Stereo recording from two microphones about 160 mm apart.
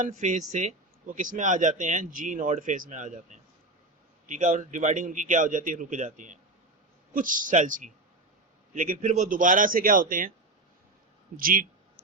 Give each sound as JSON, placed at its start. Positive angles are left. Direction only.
{"t": 0.0, "sound": "a man's voice", "side_deg": -50}
{"t": 11.3, "sound": "a man's voice", "side_deg": -65}